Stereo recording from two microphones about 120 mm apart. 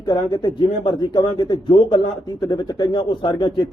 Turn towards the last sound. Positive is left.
turn(degrees=40)  # may be behind; listen again after turning